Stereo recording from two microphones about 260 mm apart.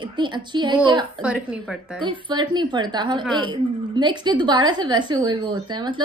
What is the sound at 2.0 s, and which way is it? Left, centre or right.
A woman's voice, centre.